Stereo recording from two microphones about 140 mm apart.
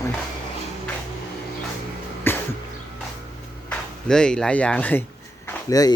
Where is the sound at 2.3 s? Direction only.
15° left (ahead or behind).